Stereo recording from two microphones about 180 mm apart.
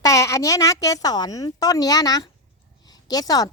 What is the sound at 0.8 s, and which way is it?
Speech, 20° left (ahead or behind).